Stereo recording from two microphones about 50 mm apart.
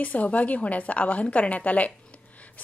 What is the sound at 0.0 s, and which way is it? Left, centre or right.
A woman's voice, left.